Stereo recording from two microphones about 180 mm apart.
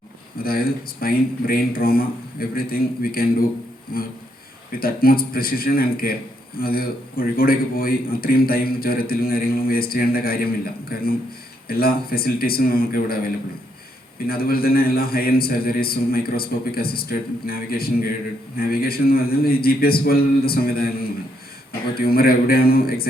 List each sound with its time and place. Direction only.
0.3 s a man's voice: 55° left (ahead or behind)
14.3 s a man's voice: 55° left (ahead or behind)